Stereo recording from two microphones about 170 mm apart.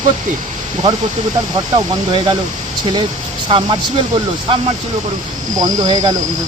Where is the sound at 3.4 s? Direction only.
25° right (ahead or behind).